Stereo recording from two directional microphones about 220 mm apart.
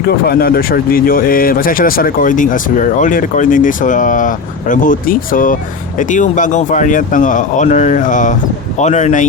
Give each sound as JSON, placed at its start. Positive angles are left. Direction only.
{"t": 0.1, "sound": "speech", "side_deg": 45}